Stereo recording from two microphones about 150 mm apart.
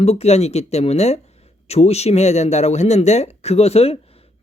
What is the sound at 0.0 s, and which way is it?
Speech, 45° left (ahead or behind).